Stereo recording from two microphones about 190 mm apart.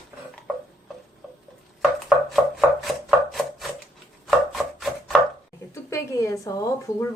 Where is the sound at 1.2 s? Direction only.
5° right (ahead or behind).